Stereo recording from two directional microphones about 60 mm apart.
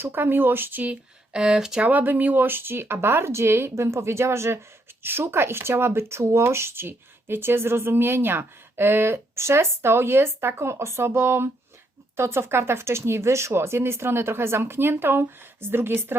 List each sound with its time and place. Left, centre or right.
0.0 s speech: right
1.3 s speech: centre
1.8 s speech: right